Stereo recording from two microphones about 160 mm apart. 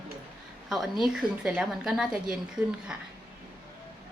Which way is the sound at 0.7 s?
Centre (ahead or behind).